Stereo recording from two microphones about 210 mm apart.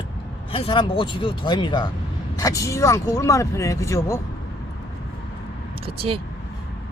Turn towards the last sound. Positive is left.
turn(degrees=-25)  # may be behind; listen again after turning